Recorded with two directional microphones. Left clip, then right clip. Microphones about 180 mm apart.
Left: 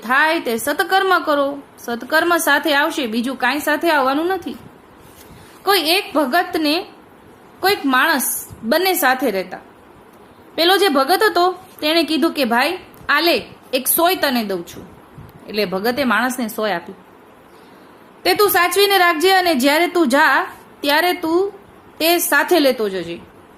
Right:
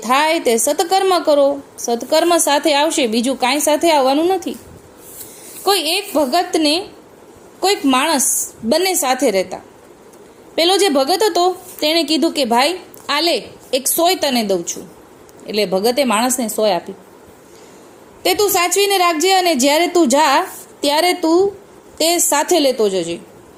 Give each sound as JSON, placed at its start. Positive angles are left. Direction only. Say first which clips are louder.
{"t": 0.0, "sound": "a woman's voice", "louder": "right 1 dB", "side_deg": -15}
{"t": 5.6, "sound": "a woman's voice", "louder": "left 1 dB", "side_deg": -15}
{"t": 18.2, "sound": "a woman's voice", "louder": "left 1 dB", "side_deg": -15}